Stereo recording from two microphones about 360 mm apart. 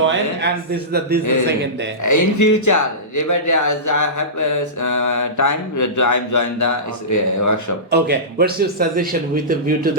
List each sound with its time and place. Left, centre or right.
0.0 s a man's voice: right
2.0 s speech: left
7.9 s a man's voice: right